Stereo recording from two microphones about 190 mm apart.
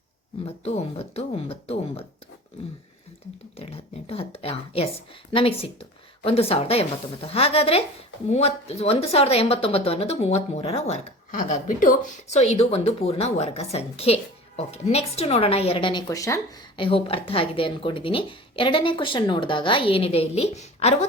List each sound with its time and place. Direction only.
0.4 s speech: 35° left (ahead or behind)
3.6 s speech: 30° left (ahead or behind)
16.8 s speech: 30° left (ahead or behind)